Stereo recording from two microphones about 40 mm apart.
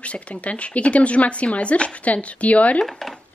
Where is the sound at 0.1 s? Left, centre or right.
Left.